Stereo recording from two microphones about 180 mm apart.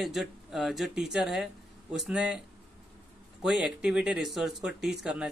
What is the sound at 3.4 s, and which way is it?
Speech, 5° right (ahead or behind).